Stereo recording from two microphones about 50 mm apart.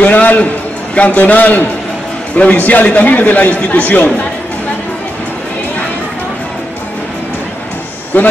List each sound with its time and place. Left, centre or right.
0.0 s a sound: left
0.9 s a man's voice: left
8.1 s a man's voice: left